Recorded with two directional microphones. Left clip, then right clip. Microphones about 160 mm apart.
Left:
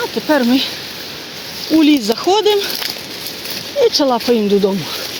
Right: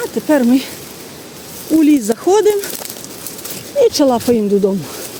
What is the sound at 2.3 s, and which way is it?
Speech, 55° right (ahead or behind).